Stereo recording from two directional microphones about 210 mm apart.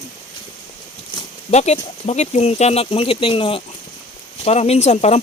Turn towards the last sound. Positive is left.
turn(degrees=30)  # may be behind; listen again after turning